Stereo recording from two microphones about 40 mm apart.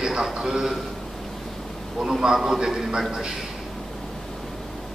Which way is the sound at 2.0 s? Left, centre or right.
Centre.